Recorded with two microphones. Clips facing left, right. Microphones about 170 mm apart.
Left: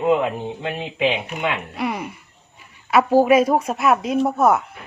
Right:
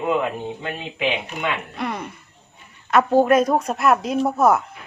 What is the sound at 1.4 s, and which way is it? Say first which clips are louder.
A woman's voice: left 3 dB; 10° left (ahead or behind).